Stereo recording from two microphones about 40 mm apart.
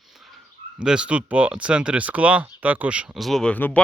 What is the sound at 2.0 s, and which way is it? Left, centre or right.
Speech, right.